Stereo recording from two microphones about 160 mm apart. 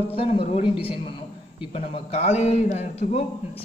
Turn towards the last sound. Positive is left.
turn(degrees=45)  # may be behind; listen again after turning